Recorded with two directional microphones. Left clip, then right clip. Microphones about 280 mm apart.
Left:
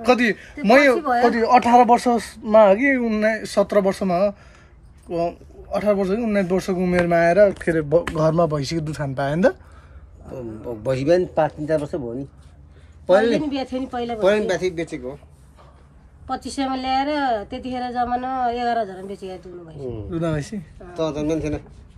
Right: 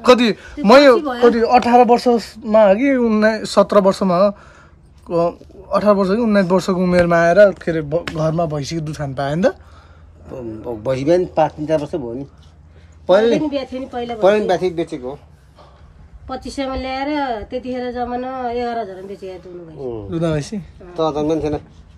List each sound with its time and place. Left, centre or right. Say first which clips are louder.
0.0 s speech: right 6 dB; centre
0.9 s a woman's voice: right 4 dB; centre
1.3 s a woman's voice: right 1 dB; centre
13.5 s a woman's voice: right 2 dB; centre
14.2 s speech: right 5 dB; centre
16.3 s a woman's voice: right 1 dB; centre
19.9 s speech: right 5 dB; centre